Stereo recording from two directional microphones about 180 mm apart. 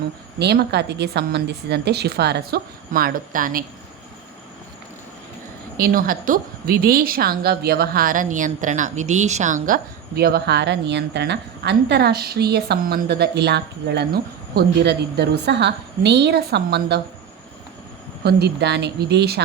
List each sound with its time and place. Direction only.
0.3 s a woman's voice: 65° right (ahead or behind); by 3.6 s 50° right (ahead or behind)
5.7 s a woman's voice: 55° right (ahead or behind)
18.2 s speech: 65° right (ahead or behind)